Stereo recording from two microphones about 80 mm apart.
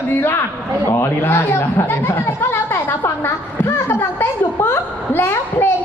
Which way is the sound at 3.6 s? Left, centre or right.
Left.